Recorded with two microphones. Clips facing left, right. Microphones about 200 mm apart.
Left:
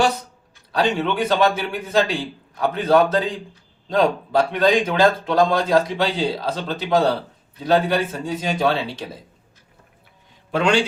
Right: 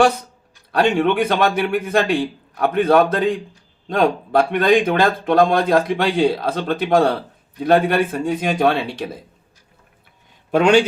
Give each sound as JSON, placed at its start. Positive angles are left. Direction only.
{"t": 0.7, "sound": "speech", "side_deg": -55}
{"t": 10.5, "sound": "speech", "side_deg": -60}